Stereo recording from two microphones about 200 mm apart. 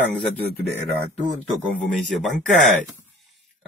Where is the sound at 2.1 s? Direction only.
Centre (ahead or behind).